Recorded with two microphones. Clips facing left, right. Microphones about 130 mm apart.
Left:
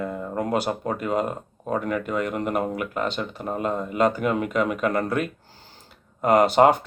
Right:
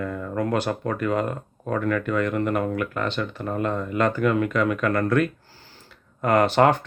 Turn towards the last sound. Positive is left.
turn(degrees=15)  # may be behind; listen again after turning